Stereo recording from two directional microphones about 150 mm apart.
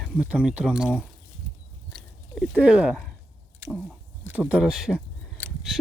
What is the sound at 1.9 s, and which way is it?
Biting, 5° left (ahead or behind).